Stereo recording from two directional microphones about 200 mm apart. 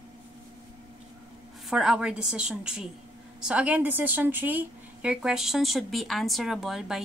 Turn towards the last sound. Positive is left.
turn(degrees=0)  # may be behind; listen again after turning